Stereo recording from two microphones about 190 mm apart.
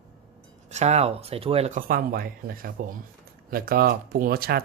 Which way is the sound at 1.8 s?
50° right (ahead or behind).